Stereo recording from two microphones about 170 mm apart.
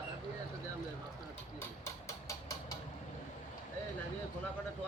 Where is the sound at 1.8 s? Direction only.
20° left (ahead or behind).